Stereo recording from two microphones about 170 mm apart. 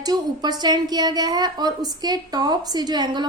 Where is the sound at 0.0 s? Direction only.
25° right (ahead or behind).